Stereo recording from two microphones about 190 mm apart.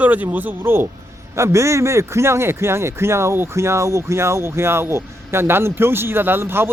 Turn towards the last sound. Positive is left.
turn(degrees=-10)  # may be behind; listen again after turning